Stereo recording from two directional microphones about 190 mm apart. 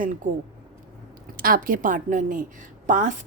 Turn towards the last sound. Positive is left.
turn(degrees=-40)  # may be behind; listen again after turning